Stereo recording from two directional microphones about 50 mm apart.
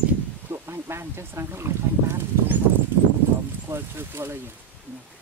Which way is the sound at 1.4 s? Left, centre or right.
Right.